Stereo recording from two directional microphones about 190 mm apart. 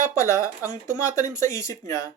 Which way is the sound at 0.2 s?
15° left (ahead or behind).